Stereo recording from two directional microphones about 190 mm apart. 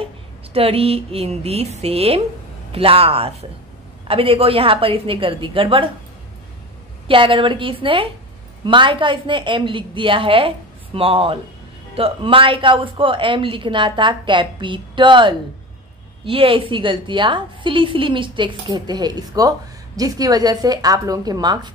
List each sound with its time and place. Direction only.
0.0 s a woman's voice: 30° right (ahead or behind)
7.1 s a woman's voice: 25° right (ahead or behind)